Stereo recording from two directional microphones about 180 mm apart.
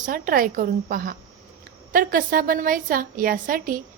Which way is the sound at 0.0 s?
50° right (ahead or behind).